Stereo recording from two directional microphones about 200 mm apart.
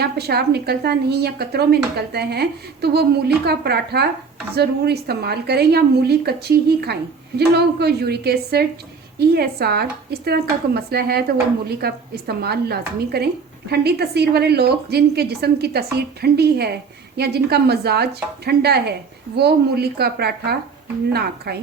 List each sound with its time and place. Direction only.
0.0 s speech: 55° right (ahead or behind)